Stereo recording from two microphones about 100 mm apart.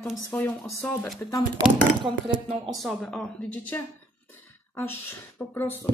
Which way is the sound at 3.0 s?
15° left (ahead or behind).